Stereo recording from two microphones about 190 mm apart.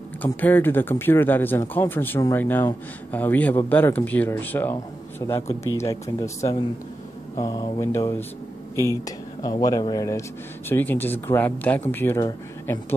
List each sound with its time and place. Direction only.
0.2 s a man's voice: 10° left (ahead or behind)
9.4 s a man's voice: 20° left (ahead or behind)